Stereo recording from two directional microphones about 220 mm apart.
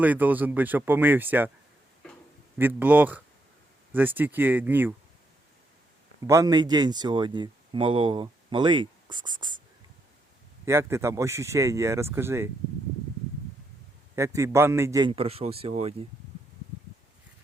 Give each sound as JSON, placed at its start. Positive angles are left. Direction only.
{"t": 0.0, "sound": "speech", "side_deg": -5}
{"t": 2.6, "sound": "speech", "side_deg": -10}
{"t": 6.2, "sound": "speech", "side_deg": -15}
{"t": 10.7, "sound": "speech", "side_deg": -10}
{"t": 14.2, "sound": "speech", "side_deg": -15}